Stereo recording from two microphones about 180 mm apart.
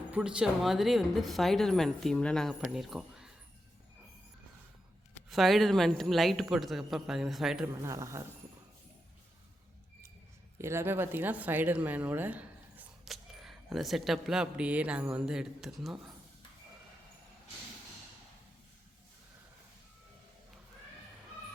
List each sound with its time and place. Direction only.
0.1 s speech: 5° right (ahead or behind)
5.3 s speech: centre (ahead or behind)
7.7 s speech: 15° right (ahead or behind)
10.6 s a woman's voice: 15° right (ahead or behind)